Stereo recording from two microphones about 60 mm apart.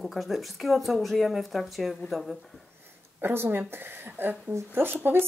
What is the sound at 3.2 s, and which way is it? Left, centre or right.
Speech, right.